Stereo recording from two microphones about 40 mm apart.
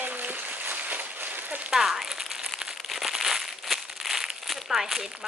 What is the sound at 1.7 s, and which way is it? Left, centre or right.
Speech, centre.